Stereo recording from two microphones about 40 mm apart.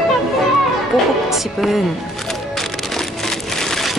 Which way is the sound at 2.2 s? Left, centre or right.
Centre.